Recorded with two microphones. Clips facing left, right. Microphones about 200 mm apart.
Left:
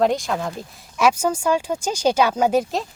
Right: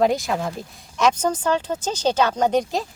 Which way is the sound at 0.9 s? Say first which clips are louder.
Left 1 dB; 10° left (ahead or behind).